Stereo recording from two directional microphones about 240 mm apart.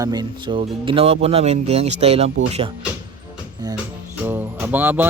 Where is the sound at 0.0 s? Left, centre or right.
Centre.